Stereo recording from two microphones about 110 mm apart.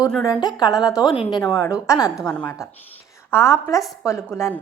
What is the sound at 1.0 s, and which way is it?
Speech, 50° left (ahead or behind).